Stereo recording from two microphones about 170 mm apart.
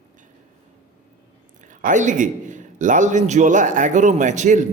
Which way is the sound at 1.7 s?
50° right (ahead or behind).